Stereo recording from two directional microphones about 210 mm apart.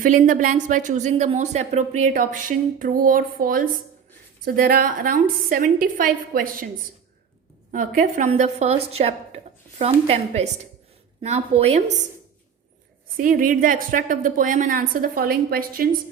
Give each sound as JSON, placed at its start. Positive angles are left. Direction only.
{"t": 0.0, "sound": "a woman's voice", "side_deg": -40}
{"t": 7.7, "sound": "a woman's voice", "side_deg": -40}
{"t": 13.1, "sound": "a woman's voice", "side_deg": -40}